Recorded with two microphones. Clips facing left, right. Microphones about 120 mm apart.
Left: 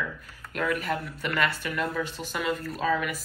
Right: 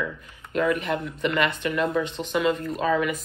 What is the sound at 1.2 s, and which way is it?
Speech, 5° left (ahead or behind).